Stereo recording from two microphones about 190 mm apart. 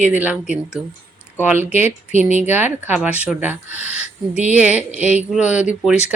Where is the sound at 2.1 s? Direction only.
40° right (ahead or behind).